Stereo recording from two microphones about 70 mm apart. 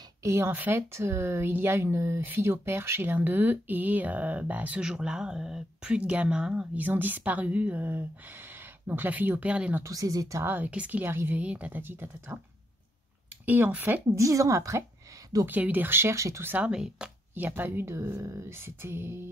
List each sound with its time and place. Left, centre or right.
0.2 s speech: right
0.6 s speech: right
0.9 s speech: right; by 9.8 s centre
9.8 s speech: right
10.4 s speech: right
10.7 s speech: centre
11.1 s speech: right
11.3 s speech: centre
13.5 s speech: right
14.1 s speech: right
15.4 s speech: right
16.6 s speech: centre
17.3 s speech: right